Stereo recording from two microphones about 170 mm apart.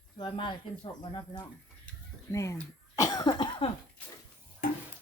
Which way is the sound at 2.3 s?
15° left (ahead or behind).